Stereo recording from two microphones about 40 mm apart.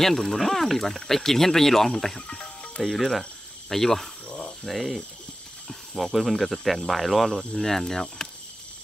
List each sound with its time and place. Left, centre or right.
0.0 s speech: centre
2.2 s music: centre
2.8 s speech: centre
4.6 s speech: centre
6.1 s speech: centre